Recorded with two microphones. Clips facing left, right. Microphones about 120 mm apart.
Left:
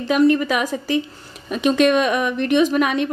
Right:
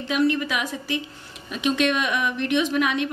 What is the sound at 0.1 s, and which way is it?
A woman's voice, 45° left (ahead or behind).